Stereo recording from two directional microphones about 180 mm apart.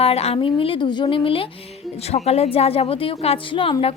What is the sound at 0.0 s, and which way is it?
A woman's voice, 35° left (ahead or behind).